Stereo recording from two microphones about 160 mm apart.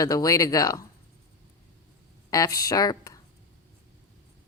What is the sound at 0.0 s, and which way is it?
Speech, 20° left (ahead or behind).